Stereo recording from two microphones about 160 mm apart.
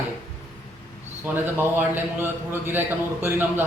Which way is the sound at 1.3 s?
15° right (ahead or behind).